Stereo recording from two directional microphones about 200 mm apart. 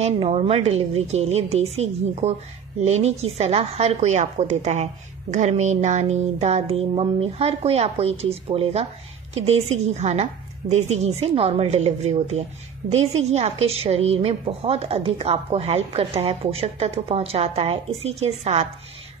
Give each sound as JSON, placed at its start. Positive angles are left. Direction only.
{"t": 0.0, "sound": "a woman's voice", "side_deg": -30}